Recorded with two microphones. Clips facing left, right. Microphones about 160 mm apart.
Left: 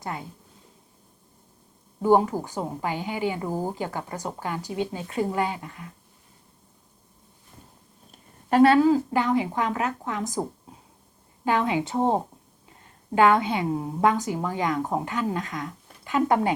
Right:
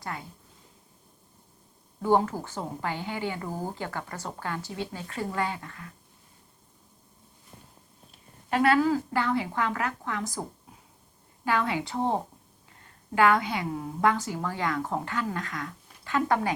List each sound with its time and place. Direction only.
0.0 s speech: 20° left (ahead or behind)
2.0 s a woman's voice: 15° left (ahead or behind)
8.1 s a sound: 40° left (ahead or behind)
8.6 s a woman's voice: 25° left (ahead or behind)
11.4 s a woman's voice: 20° left (ahead or behind)